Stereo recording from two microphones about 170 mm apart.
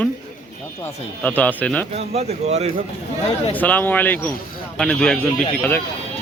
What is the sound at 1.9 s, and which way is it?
Speech, 40° right (ahead or behind).